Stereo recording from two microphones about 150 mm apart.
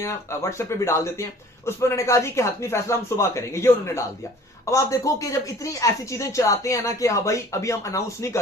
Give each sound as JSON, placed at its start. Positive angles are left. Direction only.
{"t": 0.0, "sound": "a man's voice", "side_deg": 20}